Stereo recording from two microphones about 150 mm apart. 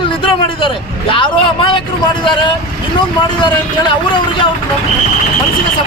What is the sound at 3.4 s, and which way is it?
Speech, 30° left (ahead or behind).